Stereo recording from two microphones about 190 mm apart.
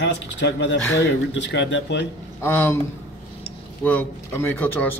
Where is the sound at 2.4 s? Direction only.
10° left (ahead or behind).